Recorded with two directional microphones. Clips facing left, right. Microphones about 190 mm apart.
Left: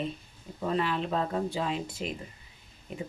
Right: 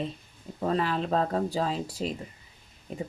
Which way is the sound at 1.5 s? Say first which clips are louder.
Right 2 dB; 35° right (ahead or behind).